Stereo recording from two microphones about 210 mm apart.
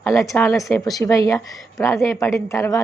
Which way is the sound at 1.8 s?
15° left (ahead or behind).